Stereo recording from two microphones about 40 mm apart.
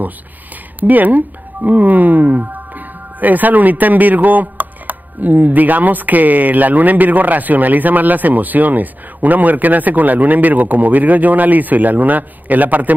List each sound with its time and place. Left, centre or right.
0.7 s speech: right